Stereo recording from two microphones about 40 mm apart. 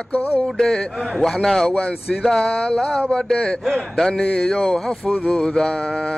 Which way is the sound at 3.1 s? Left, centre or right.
Centre.